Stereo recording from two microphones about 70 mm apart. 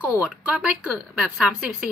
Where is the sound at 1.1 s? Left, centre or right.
Centre.